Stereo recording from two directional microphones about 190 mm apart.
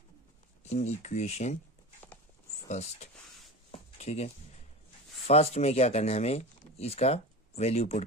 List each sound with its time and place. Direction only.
0.7 s speech: 40° left (ahead or behind)
2.7 s speech: 35° left (ahead or behind)